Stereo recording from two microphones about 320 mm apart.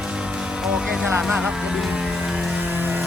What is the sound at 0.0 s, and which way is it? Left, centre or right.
Music, centre.